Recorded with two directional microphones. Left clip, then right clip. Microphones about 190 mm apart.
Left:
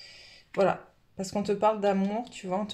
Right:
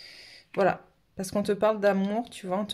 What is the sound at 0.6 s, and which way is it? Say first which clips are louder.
Speech: right 1 dB; 35° right (ahead or behind).